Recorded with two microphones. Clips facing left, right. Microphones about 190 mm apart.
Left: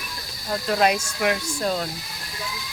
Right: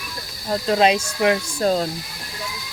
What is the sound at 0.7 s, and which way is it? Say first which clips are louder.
Speech: right 4 dB; 25° right (ahead or behind).